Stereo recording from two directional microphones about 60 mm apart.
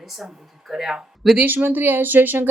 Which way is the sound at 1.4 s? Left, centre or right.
Right.